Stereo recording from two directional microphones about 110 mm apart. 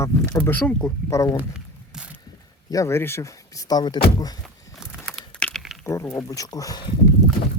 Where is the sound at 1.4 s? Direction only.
10° right (ahead or behind).